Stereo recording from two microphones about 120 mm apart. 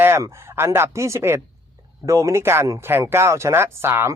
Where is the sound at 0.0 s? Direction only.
20° right (ahead or behind).